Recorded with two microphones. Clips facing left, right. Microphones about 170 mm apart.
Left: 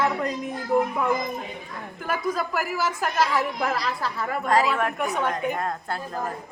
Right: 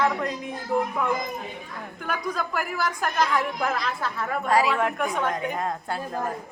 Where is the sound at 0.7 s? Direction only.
15° left (ahead or behind).